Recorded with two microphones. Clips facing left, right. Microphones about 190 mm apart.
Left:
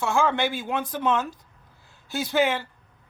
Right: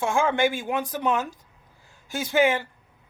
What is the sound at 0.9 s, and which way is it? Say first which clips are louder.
Speech: even; 15° right (ahead or behind).